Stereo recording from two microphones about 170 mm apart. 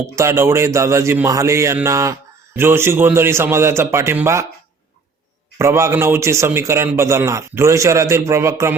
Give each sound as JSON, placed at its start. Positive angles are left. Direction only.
{"t": 0.2, "sound": "a man's voice", "side_deg": -15}
{"t": 5.5, "sound": "a man's voice", "side_deg": -15}